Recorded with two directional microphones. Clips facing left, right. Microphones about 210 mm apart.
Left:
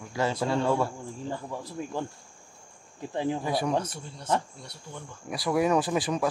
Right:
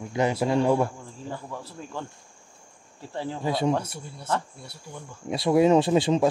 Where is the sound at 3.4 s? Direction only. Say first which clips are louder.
Right 3 dB; 25° right (ahead or behind).